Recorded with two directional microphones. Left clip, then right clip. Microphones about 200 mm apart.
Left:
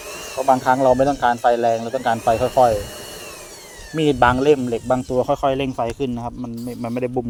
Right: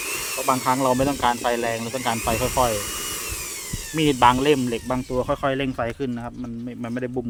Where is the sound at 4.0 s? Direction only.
Centre (ahead or behind).